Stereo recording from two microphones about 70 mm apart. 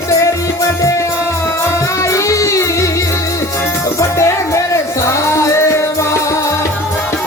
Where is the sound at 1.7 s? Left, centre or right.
Left.